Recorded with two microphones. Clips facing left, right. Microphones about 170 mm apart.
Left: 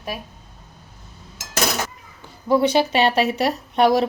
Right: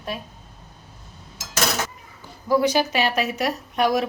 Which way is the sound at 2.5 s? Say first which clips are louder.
Left 2 dB; 25° left (ahead or behind).